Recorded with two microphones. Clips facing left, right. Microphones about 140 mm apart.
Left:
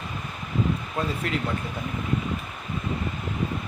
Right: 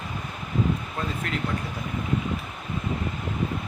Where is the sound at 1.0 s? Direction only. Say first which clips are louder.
Left 3 dB; 15° left (ahead or behind).